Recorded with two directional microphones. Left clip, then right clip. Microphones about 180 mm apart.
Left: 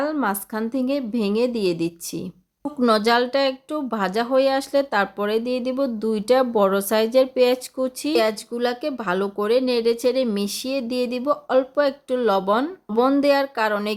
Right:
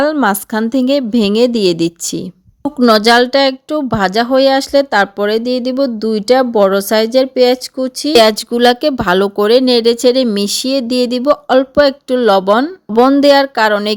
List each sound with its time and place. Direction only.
0.0 s speech: 50° right (ahead or behind); by 8.1 s 30° right (ahead or behind)
8.1 s speech: 50° right (ahead or behind)